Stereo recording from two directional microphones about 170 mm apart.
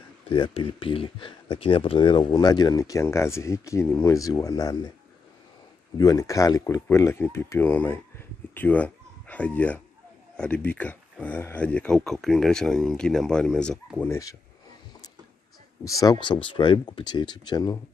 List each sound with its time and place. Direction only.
0.3 s speech: 30° left (ahead or behind)
5.9 s speech: 20° left (ahead or behind)
16.0 s speech: 25° left (ahead or behind)